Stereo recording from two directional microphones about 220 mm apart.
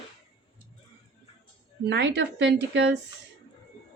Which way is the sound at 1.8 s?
50° right (ahead or behind).